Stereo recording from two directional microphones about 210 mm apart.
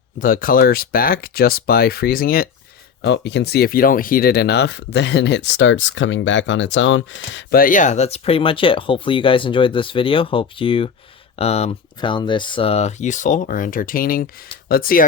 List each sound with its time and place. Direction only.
0.2 s speech: 40° left (ahead or behind); by 7.4 s 60° left (ahead or behind)
7.5 s speech: 40° left (ahead or behind)